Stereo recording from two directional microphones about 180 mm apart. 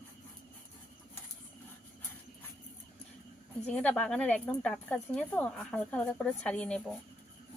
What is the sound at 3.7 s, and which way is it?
Speech, 5° left (ahead or behind).